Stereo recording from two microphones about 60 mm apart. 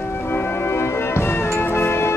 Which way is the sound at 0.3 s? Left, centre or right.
Left.